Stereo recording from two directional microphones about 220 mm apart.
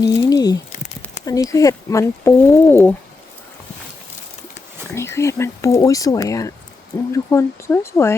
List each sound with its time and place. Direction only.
0.0 s speech: 15° left (ahead or behind)
4.9 s speech: 10° left (ahead or behind)